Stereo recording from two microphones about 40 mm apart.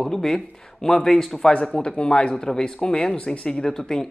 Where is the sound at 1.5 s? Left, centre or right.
Left.